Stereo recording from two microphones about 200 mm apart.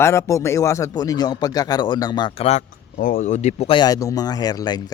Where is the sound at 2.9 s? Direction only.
45° left (ahead or behind).